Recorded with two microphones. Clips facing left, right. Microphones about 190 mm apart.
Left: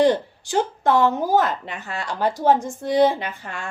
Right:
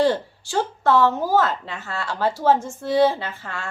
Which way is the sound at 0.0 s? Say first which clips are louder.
Left 2 dB; 15° left (ahead or behind).